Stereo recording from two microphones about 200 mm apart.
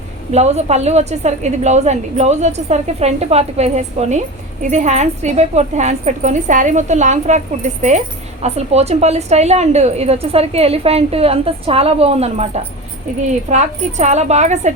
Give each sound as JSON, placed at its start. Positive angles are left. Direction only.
{"t": 0.3, "sound": "a woman's voice", "side_deg": -35}